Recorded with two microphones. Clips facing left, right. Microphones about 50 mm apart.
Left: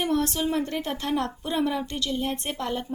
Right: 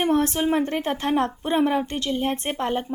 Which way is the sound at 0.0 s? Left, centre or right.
Right.